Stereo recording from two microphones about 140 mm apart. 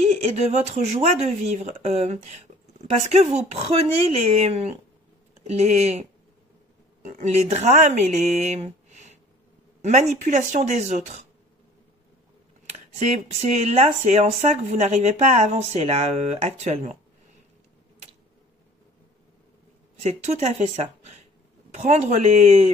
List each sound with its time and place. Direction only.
0.4 s speech: 50° right (ahead or behind)
7.1 s speech: 60° right (ahead or behind)
12.7 s speech: 50° right (ahead or behind)
20.0 s speech: 50° right (ahead or behind)